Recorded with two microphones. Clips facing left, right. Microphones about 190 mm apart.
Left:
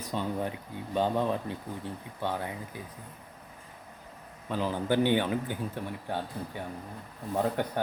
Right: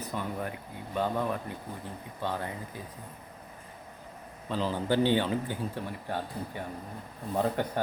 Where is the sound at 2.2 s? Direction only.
15° left (ahead or behind).